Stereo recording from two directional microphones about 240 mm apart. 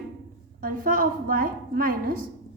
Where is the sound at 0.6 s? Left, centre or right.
Right.